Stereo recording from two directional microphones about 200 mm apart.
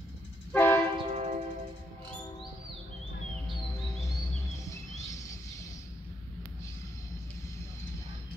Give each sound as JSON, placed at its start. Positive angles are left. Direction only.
{"t": 0.5, "sound": "train", "side_deg": 10}
{"t": 0.9, "sound": "train", "side_deg": -35}